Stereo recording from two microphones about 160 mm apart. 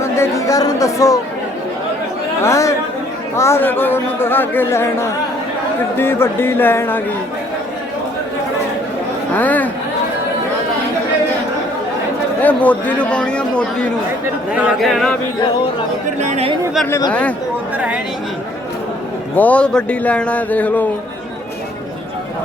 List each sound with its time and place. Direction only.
0.0 s speech: 20° left (ahead or behind)
2.4 s speech: 20° left (ahead or behind)
9.3 s speech: 10° left (ahead or behind)
12.4 s speech: 10° left (ahead or behind)
14.5 s speech: 5° right (ahead or behind)
16.2 s speech: 45° right (ahead or behind)
17.1 s speech: 10° left (ahead or behind)
17.7 s a woman's voice: 10° right (ahead or behind)
19.4 s speech: 10° left (ahead or behind)